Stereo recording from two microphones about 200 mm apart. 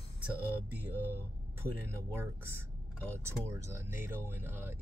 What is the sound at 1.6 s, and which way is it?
Speech, 10° right (ahead or behind).